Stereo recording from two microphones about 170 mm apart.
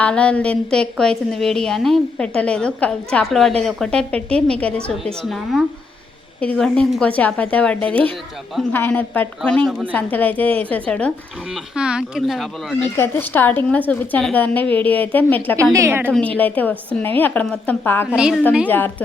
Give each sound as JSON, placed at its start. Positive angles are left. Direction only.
{"t": 0.0, "sound": "a woman's voice", "side_deg": 5}
{"t": 9.6, "sound": "a woman's voice", "side_deg": -5}
{"t": 9.9, "sound": "a woman's voice", "side_deg": 10}
{"t": 11.5, "sound": "a woman's voice", "side_deg": -5}
{"t": 12.8, "sound": "a woman's voice", "side_deg": 10}
{"t": 15.7, "sound": "a woman's voice", "side_deg": -15}
{"t": 16.0, "sound": "a woman's voice", "side_deg": 5}
{"t": 18.1, "sound": "a woman's voice", "side_deg": -5}
{"t": 18.7, "sound": "a woman's voice", "side_deg": 10}